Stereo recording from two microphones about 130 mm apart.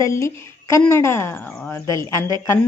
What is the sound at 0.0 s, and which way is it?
A woman's voice, 20° left (ahead or behind).